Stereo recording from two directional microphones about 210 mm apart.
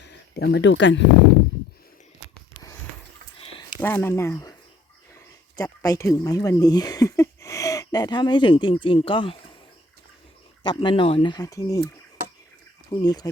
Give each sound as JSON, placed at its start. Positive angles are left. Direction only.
{"t": 0.0, "sound": "speech", "side_deg": 55}
{"t": 3.8, "sound": "speech", "side_deg": 10}
{"t": 10.6, "sound": "speech", "side_deg": 20}
{"t": 12.9, "sound": "speech", "side_deg": 20}